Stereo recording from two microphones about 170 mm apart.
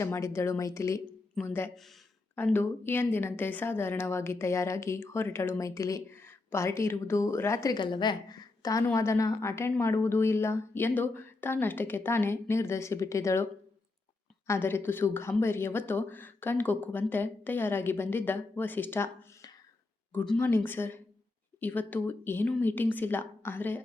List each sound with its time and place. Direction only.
0.0 s a woman's voice: 15° left (ahead or behind)